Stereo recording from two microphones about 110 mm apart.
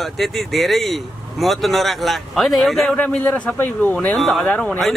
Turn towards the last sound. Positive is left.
turn(degrees=5)  # may be behind; listen again after turning